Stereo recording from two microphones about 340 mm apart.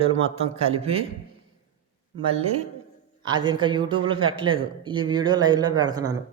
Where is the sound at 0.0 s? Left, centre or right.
Centre.